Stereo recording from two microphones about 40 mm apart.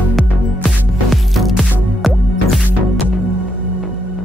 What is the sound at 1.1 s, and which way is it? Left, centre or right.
Music, centre.